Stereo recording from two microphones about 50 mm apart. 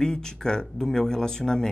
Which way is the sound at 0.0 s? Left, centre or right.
Centre.